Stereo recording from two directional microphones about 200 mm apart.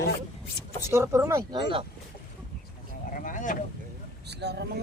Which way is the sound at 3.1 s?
40° left (ahead or behind).